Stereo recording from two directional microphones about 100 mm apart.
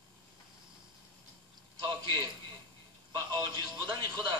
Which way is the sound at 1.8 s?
55° right (ahead or behind).